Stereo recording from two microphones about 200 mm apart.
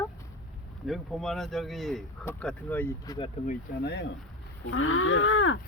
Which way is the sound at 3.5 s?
55° left (ahead or behind).